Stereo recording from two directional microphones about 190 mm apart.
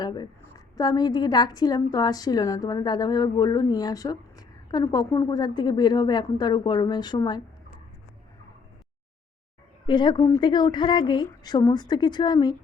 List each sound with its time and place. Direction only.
0.0 s a woman's voice: 20° left (ahead or behind)
9.8 s a woman's voice: 25° left (ahead or behind)